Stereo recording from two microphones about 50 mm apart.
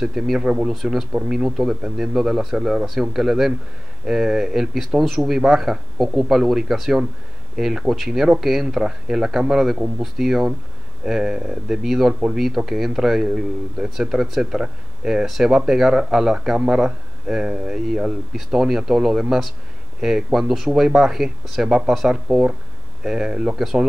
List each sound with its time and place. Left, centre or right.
0.0 s speech: centre
18.3 s speech: centre
22.1 s speech: centre